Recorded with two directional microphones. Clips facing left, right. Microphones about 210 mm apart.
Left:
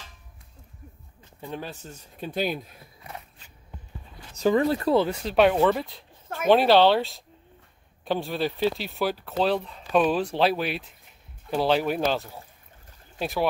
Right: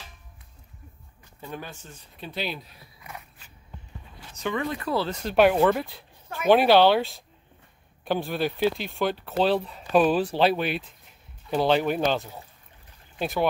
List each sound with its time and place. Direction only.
1.4 s speech: 30° left (ahead or behind); by 2.9 s 50° left (ahead or behind)
4.4 s speech: 35° left (ahead or behind)
4.9 s speech: 15° left (ahead or behind)
5.2 s speech: centre (ahead or behind)